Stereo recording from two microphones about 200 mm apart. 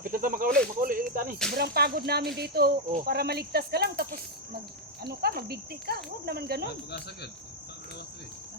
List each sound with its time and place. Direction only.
0.0 s speech: 45° right (ahead or behind)
0.8 s snake: 45° right (ahead or behind)
1.5 s speech: 50° right (ahead or behind)